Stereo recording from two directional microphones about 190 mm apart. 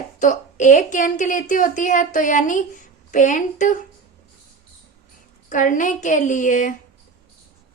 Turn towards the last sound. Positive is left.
turn(degrees=40)  # may be behind; listen again after turning